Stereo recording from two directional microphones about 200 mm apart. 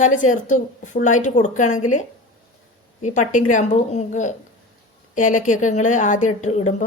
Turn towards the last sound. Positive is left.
turn(degrees=35)  # may be behind; listen again after turning